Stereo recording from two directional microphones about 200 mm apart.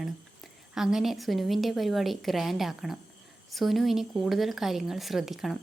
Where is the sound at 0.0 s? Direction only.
Centre (ahead or behind).